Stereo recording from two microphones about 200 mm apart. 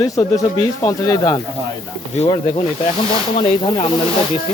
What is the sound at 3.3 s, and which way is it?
Speech, 25° left (ahead or behind).